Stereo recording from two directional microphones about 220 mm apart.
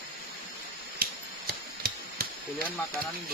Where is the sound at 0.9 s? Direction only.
40° right (ahead or behind).